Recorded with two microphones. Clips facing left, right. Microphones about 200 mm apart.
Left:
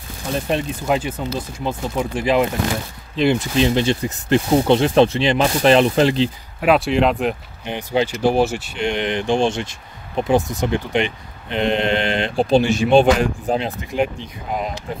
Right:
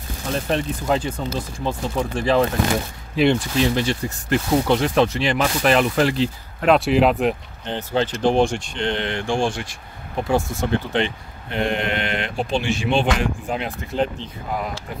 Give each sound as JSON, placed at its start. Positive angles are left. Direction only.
{"t": 0.5, "sound": "speech", "side_deg": 10}
{"t": 6.6, "sound": "speech", "side_deg": 0}
{"t": 7.6, "sound": "speech", "side_deg": 10}
{"t": 13.9, "sound": "speech", "side_deg": 10}